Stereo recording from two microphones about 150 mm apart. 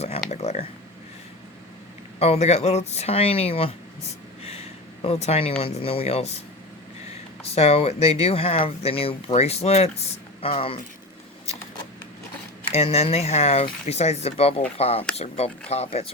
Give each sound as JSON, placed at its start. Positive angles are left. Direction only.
{"t": 0.3, "sound": "speech", "side_deg": 50}
{"t": 2.1, "sound": "speech", "side_deg": 45}
{"t": 5.0, "sound": "speech", "side_deg": 45}
{"t": 7.4, "sound": "speech", "side_deg": 40}
{"t": 12.7, "sound": "speech", "side_deg": 40}